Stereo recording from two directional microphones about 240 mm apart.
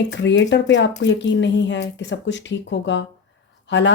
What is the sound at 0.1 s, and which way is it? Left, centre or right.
Speech, left.